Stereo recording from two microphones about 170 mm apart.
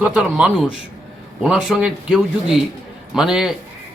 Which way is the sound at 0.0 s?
5° right (ahead or behind).